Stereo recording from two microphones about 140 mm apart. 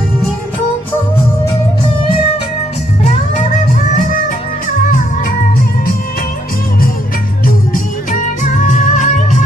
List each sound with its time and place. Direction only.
3.0 s music: 65° left (ahead or behind)
7.4 s music: 70° left (ahead or behind)